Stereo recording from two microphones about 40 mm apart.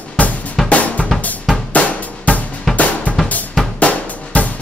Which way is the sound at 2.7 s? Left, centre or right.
Left.